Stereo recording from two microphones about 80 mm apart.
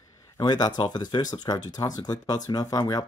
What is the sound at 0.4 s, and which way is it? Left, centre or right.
Speech, left.